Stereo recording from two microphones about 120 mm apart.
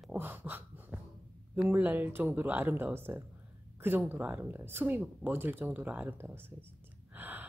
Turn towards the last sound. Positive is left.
turn(degrees=-15)  # may be behind; listen again after turning